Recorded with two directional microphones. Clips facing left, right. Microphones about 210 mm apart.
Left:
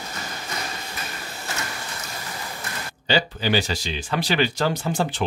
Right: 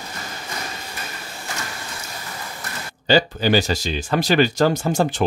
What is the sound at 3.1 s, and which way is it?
Speech, 45° right (ahead or behind).